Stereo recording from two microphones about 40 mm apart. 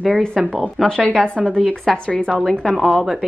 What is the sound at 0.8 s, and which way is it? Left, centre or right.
Speech, left.